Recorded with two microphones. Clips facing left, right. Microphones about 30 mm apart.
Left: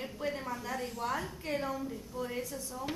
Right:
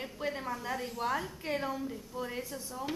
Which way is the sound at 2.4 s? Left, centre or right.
Right.